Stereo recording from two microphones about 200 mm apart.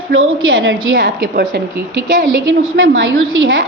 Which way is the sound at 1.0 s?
50° right (ahead or behind).